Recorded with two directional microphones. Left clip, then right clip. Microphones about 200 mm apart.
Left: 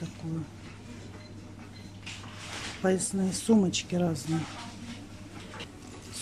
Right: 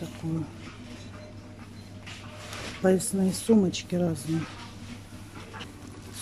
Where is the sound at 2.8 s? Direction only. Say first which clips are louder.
Right 4 dB; centre (ahead or behind).